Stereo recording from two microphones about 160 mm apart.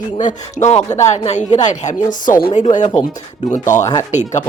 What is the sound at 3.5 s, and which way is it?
Speech, 50° left (ahead or behind).